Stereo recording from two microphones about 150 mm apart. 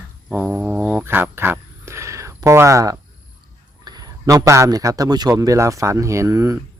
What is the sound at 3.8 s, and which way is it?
A man's voice, 25° right (ahead or behind).